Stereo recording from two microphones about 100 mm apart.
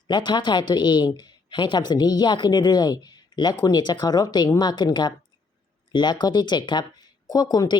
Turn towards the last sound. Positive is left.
turn(degrees=40)  # may be behind; listen again after turning